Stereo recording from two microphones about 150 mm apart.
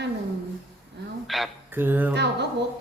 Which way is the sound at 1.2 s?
Centre (ahead or behind).